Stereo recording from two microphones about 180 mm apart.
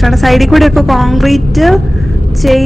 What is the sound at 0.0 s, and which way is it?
A woman's voice, centre (ahead or behind).